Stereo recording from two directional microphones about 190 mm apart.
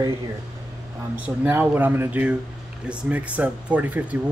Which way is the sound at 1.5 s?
10° right (ahead or behind).